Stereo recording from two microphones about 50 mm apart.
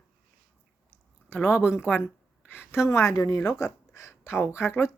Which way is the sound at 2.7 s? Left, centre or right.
Left.